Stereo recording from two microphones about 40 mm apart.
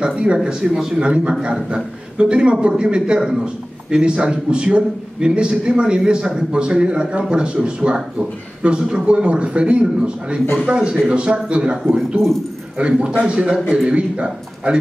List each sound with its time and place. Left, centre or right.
0.0 s a man's voice: right